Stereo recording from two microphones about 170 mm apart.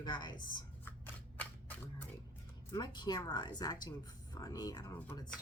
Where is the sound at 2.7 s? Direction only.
25° left (ahead or behind).